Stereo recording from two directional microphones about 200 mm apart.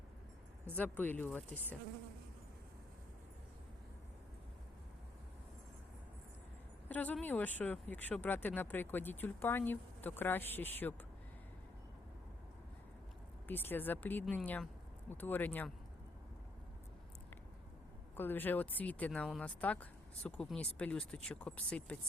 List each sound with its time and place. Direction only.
0.8 s speech: 10° left (ahead or behind)
6.8 s speech: 10° left (ahead or behind)
13.5 s speech: 10° left (ahead or behind)
18.2 s speech: 10° left (ahead or behind)